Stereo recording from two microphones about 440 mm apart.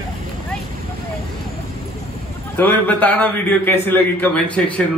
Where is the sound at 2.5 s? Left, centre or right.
Centre.